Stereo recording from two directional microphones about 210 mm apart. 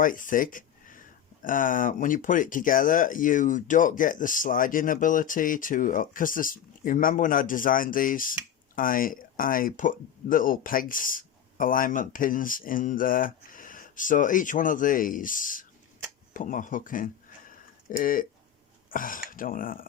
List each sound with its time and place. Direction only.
0.0 s speech: 40° left (ahead or behind)
17.5 s a sound: 40° left (ahead or behind)
18.9 s speech: 40° left (ahead or behind)